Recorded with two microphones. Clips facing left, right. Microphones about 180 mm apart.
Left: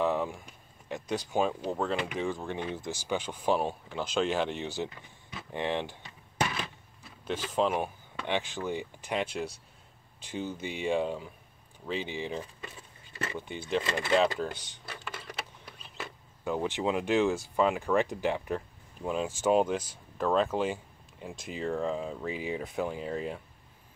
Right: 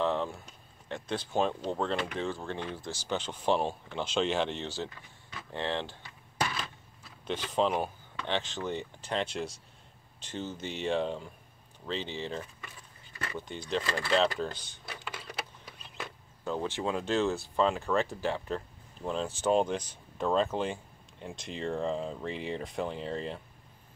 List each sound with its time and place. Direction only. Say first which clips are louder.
0.0 s speech: left 1 dB; 10° left (ahead or behind)
5.5 s cutlery: left 2 dB; 15° left (ahead or behind)
7.2 s speech: even; 5° left (ahead or behind)
12.6 s a sound: left 4 dB; 25° left (ahead or behind)
13.7 s speech: left 2 dB; 15° left (ahead or behind)
14.1 s speech: left 2 dB; 10° left (ahead or behind)
15.0 s vehicle: even; 5° right (ahead or behind)
16.4 s speech: left 2 dB; 15° left (ahead or behind)